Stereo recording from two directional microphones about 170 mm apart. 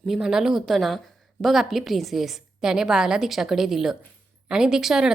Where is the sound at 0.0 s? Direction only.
5° right (ahead or behind).